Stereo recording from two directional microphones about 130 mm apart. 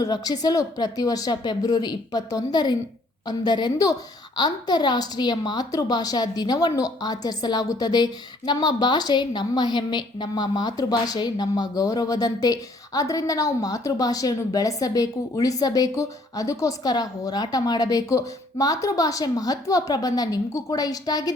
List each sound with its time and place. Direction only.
0.0 s a woman's voice: 30° left (ahead or behind)